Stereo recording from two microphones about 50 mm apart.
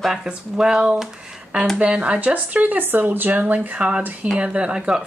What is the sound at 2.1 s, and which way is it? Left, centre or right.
Speech, right.